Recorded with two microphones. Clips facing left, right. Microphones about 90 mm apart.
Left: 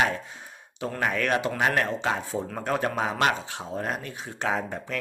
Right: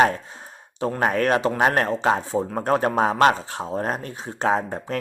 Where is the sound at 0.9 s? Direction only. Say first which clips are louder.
Right 5 dB; 40° right (ahead or behind).